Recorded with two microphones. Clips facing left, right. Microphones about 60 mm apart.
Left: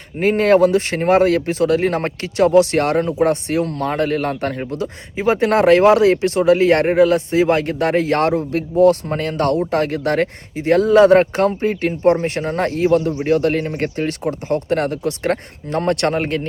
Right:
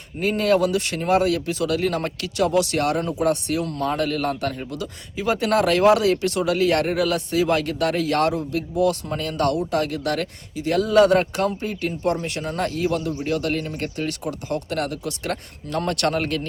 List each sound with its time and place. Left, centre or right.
0.2 s speech: left